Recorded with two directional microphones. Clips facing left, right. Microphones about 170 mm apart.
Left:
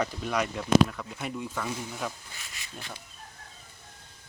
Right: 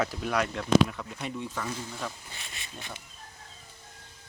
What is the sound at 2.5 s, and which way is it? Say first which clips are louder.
Speech: left 1 dB; 20° right (ahead or behind).